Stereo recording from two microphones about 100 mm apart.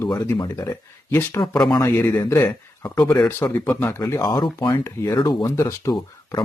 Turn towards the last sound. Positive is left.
turn(degrees=35)  # may be behind; listen again after turning